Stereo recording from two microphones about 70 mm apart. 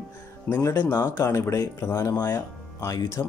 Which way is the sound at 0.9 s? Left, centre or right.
Left.